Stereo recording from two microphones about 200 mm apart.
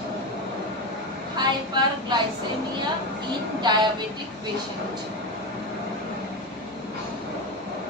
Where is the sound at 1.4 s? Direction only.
20° right (ahead or behind).